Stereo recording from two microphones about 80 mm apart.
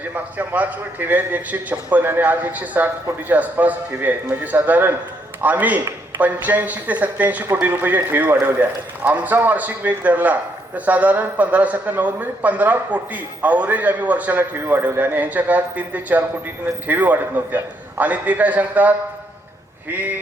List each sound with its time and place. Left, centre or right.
0.1 s a man's voice: centre